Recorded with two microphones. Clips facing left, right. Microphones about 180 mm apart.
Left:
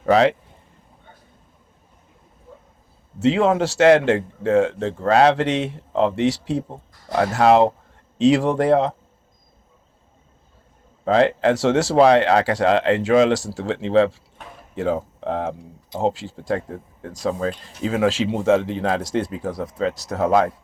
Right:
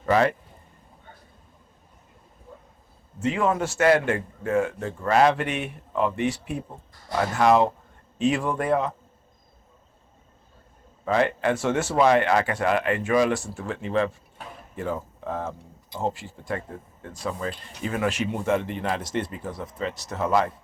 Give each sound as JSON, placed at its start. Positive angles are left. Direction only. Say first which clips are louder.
{"t": 0.0, "sound": "speech", "louder": "left 5 dB", "side_deg": 75}
{"t": 3.2, "sound": "a man's voice", "louder": "left 6 dB", "side_deg": 90}
{"t": 7.2, "sound": "speech", "louder": "left 4 dB", "side_deg": 70}
{"t": 8.2, "sound": "a man's voice", "louder": "left 7 dB", "side_deg": 90}
{"t": 11.0, "sound": "a man's voice", "louder": "left 6 dB", "side_deg": 80}
{"t": 16.0, "sound": "a man's voice", "louder": "left 7 dB", "side_deg": 85}
{"t": 19.2, "sound": "a man's voice", "louder": "left 6 dB", "side_deg": 80}
{"t": 19.5, "sound": "speech", "louder": "left 7 dB", "side_deg": 40}
{"t": 20.1, "sound": "speech", "louder": "left 5 dB", "side_deg": 70}